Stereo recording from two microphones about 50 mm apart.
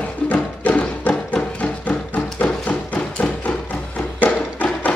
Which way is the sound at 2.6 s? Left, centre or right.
Left.